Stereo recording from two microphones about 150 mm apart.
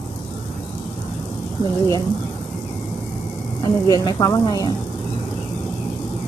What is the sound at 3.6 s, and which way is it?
Speech, 25° left (ahead or behind).